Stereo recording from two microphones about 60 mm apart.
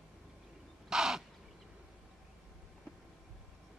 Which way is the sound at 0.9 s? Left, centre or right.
Centre.